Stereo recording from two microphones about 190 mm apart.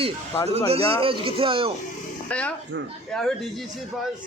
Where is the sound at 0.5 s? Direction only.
30° right (ahead or behind).